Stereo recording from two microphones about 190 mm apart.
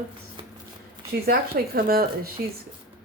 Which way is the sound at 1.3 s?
50° right (ahead or behind).